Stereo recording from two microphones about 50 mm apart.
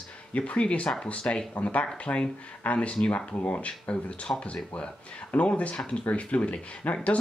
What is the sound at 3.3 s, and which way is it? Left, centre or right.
Speech, left.